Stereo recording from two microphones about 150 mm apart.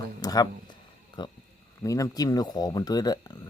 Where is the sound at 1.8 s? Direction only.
20° left (ahead or behind).